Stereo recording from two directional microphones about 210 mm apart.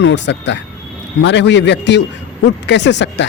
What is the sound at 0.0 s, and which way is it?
A man's voice, 55° left (ahead or behind).